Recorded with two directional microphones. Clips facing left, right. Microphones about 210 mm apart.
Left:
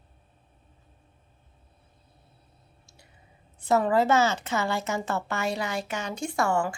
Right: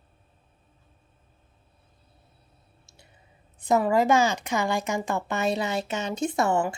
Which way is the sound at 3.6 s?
15° right (ahead or behind).